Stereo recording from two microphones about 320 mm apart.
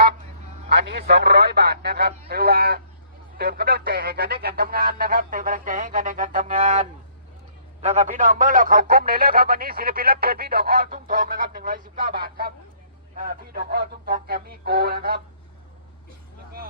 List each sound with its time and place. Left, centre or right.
0.7 s a man's voice: right
13.1 s a man's voice: right